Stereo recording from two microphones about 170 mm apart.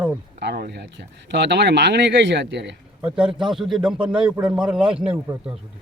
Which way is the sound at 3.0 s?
5° right (ahead or behind).